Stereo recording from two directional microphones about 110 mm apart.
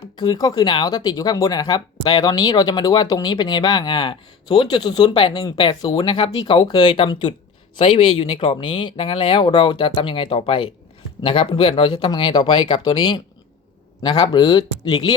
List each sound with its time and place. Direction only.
0.2 s speech: 40° left (ahead or behind)
5.8 s speech: 35° left (ahead or behind)
6.1 s speech: 55° left (ahead or behind)
6.4 s speech: 40° left (ahead or behind)
7.9 s speech: 55° left (ahead or behind)